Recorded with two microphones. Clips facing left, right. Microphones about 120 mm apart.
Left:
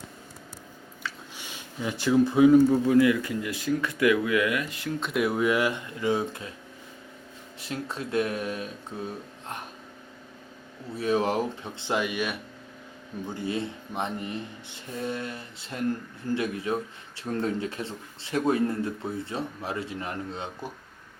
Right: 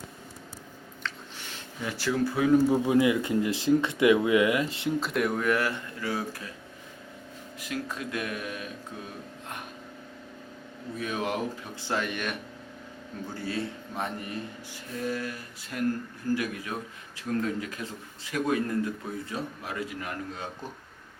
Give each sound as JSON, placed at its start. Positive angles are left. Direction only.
{"t": 1.0, "sound": "a sound", "side_deg": 15}
{"t": 2.6, "sound": "speech", "side_deg": -15}
{"t": 4.9, "sound": "speech", "side_deg": 0}
{"t": 7.6, "sound": "speech", "side_deg": 30}
{"t": 10.9, "sound": "speech", "side_deg": 30}
{"t": 11.9, "sound": "speech", "side_deg": 10}
{"t": 13.2, "sound": "speech", "side_deg": 20}